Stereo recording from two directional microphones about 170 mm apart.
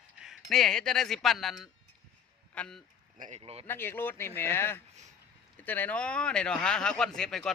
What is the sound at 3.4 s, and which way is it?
Speech, 35° right (ahead or behind).